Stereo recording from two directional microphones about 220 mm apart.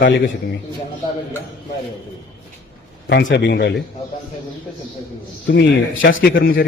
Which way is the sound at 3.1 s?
50° left (ahead or behind).